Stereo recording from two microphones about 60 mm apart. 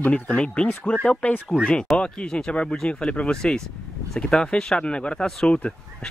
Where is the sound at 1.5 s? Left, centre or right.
Centre.